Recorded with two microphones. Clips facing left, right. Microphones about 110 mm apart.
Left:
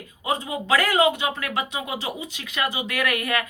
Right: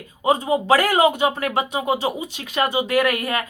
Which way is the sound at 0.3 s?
35° right (ahead or behind).